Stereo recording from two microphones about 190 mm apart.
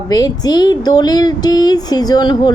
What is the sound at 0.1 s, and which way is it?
A woman's voice, 20° left (ahead or behind).